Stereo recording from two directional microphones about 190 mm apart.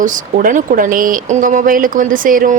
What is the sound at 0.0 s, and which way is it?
Speech, 45° right (ahead or behind).